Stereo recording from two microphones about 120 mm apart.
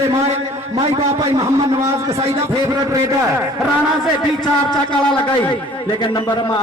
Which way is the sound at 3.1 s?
20° right (ahead or behind).